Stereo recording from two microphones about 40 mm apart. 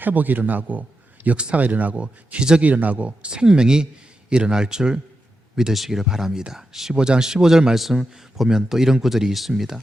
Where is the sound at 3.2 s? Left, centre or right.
Right.